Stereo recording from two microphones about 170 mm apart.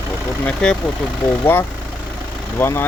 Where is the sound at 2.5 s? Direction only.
15° left (ahead or behind).